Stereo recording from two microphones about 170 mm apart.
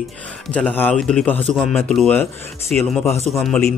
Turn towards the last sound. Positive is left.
turn(degrees=0)  # may be behind; listen again after turning